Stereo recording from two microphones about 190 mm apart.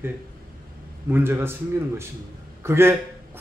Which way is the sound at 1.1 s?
10° right (ahead or behind).